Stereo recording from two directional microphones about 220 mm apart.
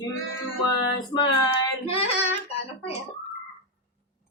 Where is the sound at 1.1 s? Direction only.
20° left (ahead or behind).